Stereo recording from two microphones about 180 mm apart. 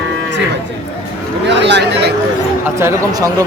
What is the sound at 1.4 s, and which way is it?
Speech, 75° right (ahead or behind).